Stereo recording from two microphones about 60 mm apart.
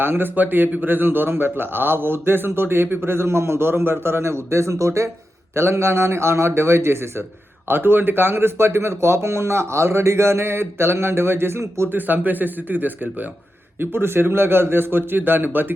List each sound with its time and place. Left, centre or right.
0.0 s speech: right
5.5 s speech: right
7.7 s speech: right
11.9 s speech: right